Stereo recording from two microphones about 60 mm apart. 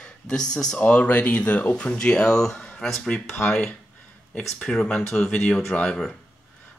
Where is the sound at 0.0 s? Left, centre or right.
Centre.